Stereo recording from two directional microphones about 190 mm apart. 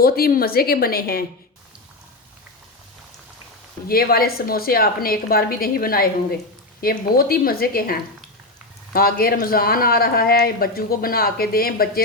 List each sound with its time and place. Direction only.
0.0 s speech: 50° left (ahead or behind)
3.8 s speech: 50° left (ahead or behind)